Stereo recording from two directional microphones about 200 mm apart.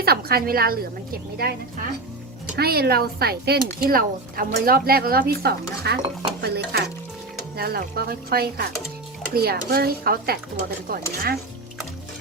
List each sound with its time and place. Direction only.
0.0 s speech: 50° right (ahead or behind)